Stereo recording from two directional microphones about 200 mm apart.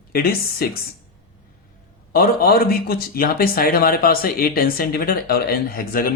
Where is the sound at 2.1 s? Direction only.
50° left (ahead or behind).